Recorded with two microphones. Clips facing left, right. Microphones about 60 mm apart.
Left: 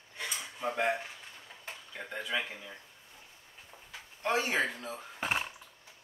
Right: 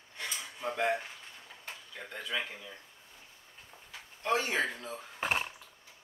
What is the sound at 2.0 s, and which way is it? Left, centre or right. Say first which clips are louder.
Speech: left 2 dB; centre.